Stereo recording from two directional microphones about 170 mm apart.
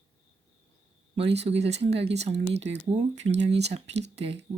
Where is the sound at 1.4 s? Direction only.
40° right (ahead or behind).